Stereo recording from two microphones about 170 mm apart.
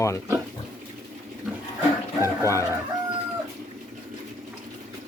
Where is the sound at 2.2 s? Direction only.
15° left (ahead or behind).